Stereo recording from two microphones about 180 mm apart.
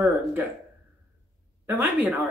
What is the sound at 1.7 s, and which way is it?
Speech, 10° right (ahead or behind).